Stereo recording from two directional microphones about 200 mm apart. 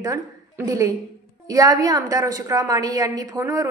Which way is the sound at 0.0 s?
15° right (ahead or behind).